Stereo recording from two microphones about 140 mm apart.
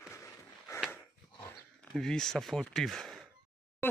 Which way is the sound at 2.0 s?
5° left (ahead or behind).